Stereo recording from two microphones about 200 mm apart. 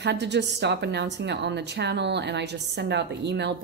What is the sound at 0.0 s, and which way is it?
A woman's voice, 60° right (ahead or behind).